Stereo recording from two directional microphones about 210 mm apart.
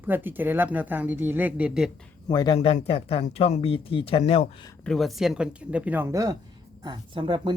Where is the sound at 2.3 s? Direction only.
20° left (ahead or behind).